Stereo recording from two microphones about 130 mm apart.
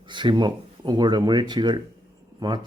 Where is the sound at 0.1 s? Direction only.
35° right (ahead or behind).